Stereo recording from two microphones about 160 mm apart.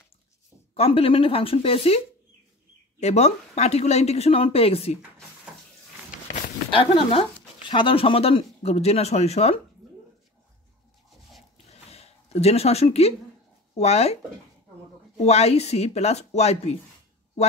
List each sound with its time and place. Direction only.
0.7 s speech: 35° left (ahead or behind)
3.0 s speech: 45° left (ahead or behind)
6.7 s speech: 35° left (ahead or behind)
11.5 s a sound: 40° left (ahead or behind)
13.7 s speech: 40° left (ahead or behind)
15.2 s speech: 40° left (ahead or behind)